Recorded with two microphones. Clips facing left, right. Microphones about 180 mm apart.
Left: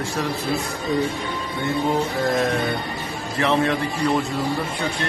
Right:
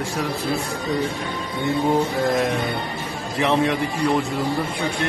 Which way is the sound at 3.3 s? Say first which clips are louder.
Right 1 dB; 15° right (ahead or behind).